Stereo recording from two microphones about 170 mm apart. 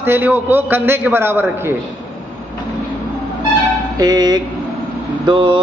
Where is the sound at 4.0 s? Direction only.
25° right (ahead or behind).